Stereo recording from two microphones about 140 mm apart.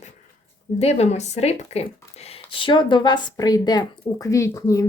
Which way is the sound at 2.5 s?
35° left (ahead or behind).